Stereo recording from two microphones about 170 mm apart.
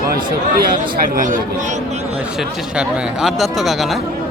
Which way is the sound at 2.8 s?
Centre (ahead or behind).